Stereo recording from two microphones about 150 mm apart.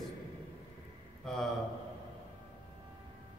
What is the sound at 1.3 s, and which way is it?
Speech, 5° left (ahead or behind).